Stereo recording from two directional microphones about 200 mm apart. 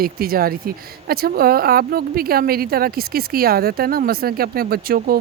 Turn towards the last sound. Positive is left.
turn(degrees=-50)  # may be behind; listen again after turning